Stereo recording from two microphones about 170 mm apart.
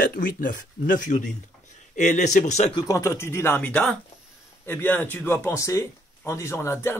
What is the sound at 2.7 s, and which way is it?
Speech, 20° left (ahead or behind).